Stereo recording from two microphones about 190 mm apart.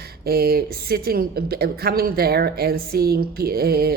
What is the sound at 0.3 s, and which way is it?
Speech, 50° right (ahead or behind).